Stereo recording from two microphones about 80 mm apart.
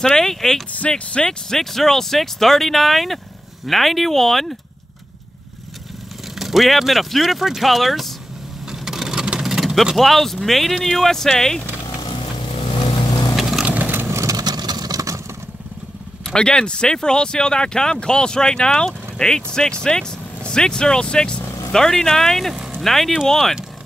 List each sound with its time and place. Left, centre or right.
0.0 s speech: centre
6.3 s speech: centre
11.8 s vehicle: left
13.4 s a sound: centre
13.7 s vehicle: right
14.0 s vehicle: right
14.3 s vehicle: right
16.3 s speech: centre